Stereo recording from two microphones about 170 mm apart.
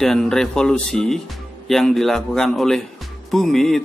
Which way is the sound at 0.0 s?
5° left (ahead or behind).